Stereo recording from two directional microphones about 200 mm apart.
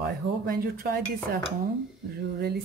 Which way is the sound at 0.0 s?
45° right (ahead or behind).